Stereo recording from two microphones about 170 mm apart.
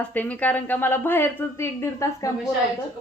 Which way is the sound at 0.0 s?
10° left (ahead or behind).